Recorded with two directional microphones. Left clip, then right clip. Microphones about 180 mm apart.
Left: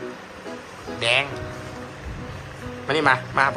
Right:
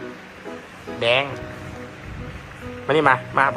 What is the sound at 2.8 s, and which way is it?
Speech, 10° left (ahead or behind).